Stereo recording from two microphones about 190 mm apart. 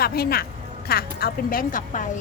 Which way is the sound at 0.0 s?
55° left (ahead or behind).